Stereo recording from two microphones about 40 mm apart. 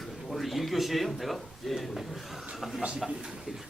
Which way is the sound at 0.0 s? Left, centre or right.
Centre.